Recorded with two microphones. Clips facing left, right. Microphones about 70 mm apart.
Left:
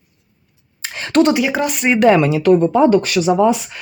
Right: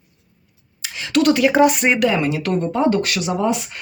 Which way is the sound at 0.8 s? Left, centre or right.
Left.